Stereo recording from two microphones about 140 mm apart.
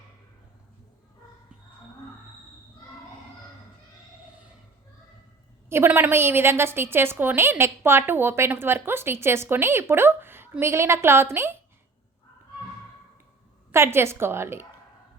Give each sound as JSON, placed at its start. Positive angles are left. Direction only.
{"t": 5.6, "sound": "a woman's voice", "side_deg": -15}
{"t": 13.7, "sound": "a woman's voice", "side_deg": -20}